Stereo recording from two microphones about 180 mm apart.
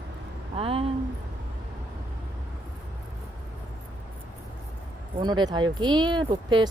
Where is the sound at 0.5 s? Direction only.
30° right (ahead or behind).